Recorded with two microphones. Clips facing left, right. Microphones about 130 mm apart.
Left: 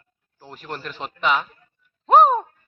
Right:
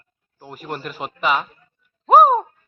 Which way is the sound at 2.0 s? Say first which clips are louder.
Right 2 dB; 5° right (ahead or behind).